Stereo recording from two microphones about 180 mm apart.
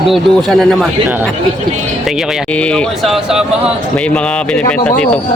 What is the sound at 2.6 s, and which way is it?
A man's voice, 5° left (ahead or behind).